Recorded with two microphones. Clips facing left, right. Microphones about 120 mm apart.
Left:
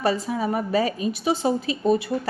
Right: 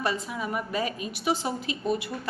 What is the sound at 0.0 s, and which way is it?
A woman's voice, 35° left (ahead or behind).